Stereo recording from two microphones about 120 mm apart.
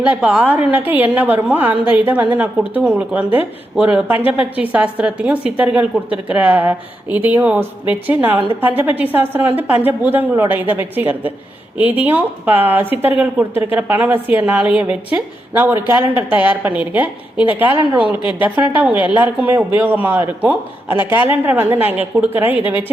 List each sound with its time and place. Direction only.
0.0 s a woman's voice: 10° right (ahead or behind)